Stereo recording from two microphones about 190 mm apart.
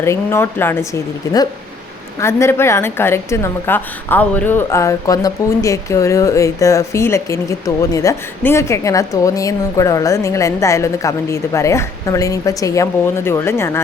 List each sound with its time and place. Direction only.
0.0 s a woman's voice: 15° left (ahead or behind)